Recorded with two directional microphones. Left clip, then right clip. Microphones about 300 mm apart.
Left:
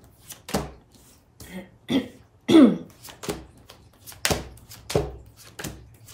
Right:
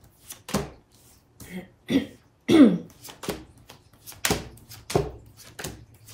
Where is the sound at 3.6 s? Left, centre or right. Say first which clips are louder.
Even; centre.